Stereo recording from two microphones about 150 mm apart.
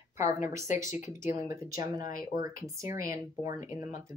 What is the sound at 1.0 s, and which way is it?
Speech, 20° right (ahead or behind).